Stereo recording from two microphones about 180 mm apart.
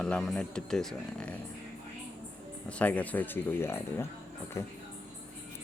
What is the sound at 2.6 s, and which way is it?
Speech, 10° left (ahead or behind).